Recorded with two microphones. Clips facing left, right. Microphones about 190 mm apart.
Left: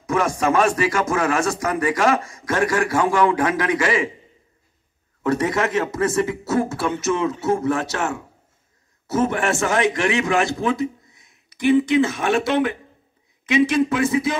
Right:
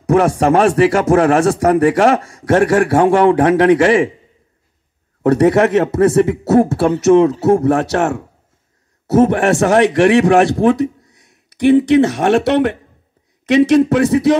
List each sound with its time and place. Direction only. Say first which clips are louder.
0.0 s speech: right 8 dB; 65° right (ahead or behind)
5.2 s speech: right 9 dB; 70° right (ahead or behind)